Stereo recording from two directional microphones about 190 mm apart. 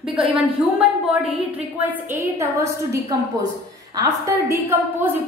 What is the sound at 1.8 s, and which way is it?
A woman's voice, 10° right (ahead or behind).